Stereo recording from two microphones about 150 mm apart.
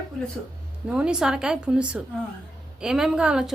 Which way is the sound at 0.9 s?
5° right (ahead or behind).